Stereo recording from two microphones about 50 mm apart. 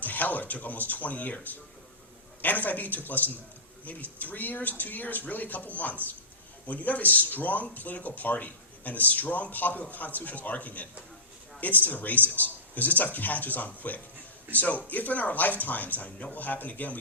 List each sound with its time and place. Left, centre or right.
0.0 s speech: left
2.4 s speech: left